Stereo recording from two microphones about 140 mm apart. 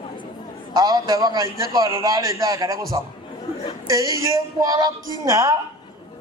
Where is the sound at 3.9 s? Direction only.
25° right (ahead or behind).